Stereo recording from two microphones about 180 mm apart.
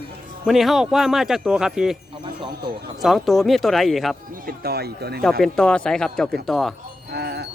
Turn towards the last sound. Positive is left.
turn(degrees=-65)  # may be behind; listen again after turning